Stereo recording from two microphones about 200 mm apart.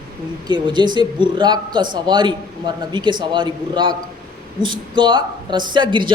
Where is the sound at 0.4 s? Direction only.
20° right (ahead or behind).